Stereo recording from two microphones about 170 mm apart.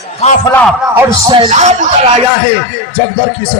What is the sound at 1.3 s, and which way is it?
Speech, 30° right (ahead or behind).